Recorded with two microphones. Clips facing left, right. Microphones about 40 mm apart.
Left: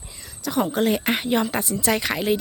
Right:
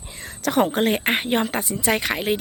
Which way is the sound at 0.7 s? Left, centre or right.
Right.